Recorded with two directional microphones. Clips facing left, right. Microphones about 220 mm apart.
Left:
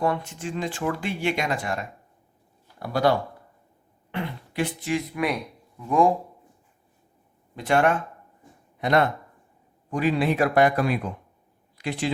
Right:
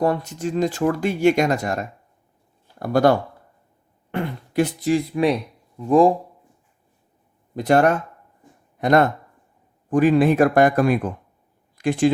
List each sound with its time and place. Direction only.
0.0 s speech: 40° right (ahead or behind)
7.5 s speech: 40° right (ahead or behind)